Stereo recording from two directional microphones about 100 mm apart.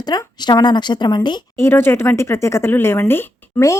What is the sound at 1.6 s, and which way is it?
Speech, 25° left (ahead or behind).